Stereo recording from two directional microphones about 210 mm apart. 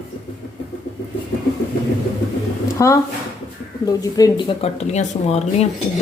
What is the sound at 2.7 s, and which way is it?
Speech, 15° left (ahead or behind).